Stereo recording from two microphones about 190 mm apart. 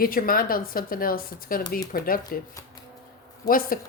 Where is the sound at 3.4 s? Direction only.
50° left (ahead or behind).